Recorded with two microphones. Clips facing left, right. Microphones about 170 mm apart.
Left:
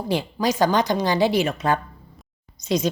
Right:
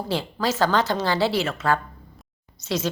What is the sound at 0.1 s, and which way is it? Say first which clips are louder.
A woman's voice: left 3 dB; 15° left (ahead or behind).